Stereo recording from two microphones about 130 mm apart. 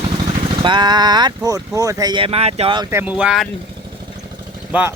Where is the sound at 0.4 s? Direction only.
40° right (ahead or behind).